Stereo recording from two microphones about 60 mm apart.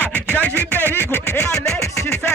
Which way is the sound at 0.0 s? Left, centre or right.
Centre.